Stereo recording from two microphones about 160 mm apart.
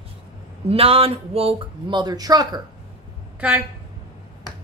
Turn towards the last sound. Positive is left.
turn(degrees=-10)  # may be behind; listen again after turning